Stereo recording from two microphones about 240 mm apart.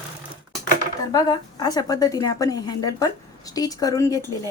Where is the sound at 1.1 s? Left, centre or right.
Centre.